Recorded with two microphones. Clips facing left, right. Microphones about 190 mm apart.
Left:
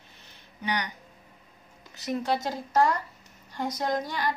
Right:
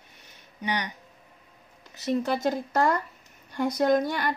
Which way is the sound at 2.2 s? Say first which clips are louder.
Right 2 dB; 50° right (ahead or behind).